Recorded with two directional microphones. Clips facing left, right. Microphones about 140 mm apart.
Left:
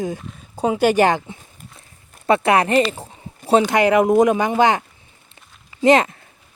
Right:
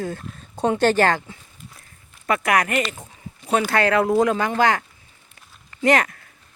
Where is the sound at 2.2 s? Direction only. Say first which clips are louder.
Left 5 dB; 30° left (ahead or behind).